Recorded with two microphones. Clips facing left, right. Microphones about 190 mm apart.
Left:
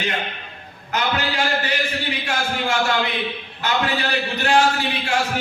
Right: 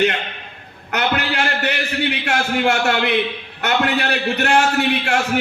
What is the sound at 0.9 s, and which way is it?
A man's voice, 70° right (ahead or behind).